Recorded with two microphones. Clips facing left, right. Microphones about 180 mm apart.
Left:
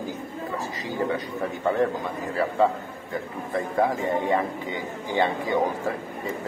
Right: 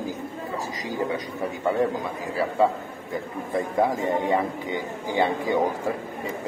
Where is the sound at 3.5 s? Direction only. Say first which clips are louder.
Right 1 dB; 15° right (ahead or behind).